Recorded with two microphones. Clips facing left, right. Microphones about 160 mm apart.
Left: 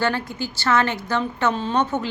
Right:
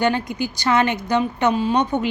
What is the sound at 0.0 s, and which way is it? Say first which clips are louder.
A woman's voice: right 3 dB; 15° right (ahead or behind).